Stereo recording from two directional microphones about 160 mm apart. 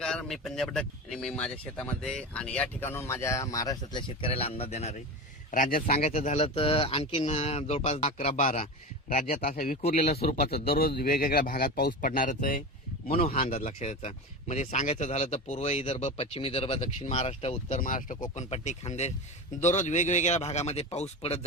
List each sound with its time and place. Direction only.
0.0 s speech: 5° left (ahead or behind); by 4.0 s 20° left (ahead or behind)
4.2 s speech: 35° left (ahead or behind)
5.5 s speech: 60° left (ahead or behind)
6.0 s speech: 45° left (ahead or behind)
9.0 s speech: 65° left (ahead or behind)
10.4 s speech: 35° left (ahead or behind)
10.7 s speech: 70° left (ahead or behind)
13.1 s speech: 40° left (ahead or behind)
17.7 s speech: 55° left (ahead or behind); by 21.4 s 40° left (ahead or behind)